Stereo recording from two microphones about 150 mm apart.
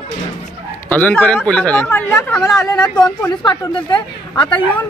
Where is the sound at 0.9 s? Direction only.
10° left (ahead or behind).